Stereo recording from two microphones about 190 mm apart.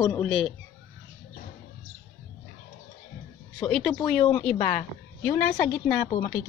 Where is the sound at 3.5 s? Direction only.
5° left (ahead or behind).